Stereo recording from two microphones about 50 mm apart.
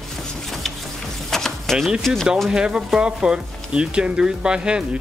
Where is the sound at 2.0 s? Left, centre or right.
Centre.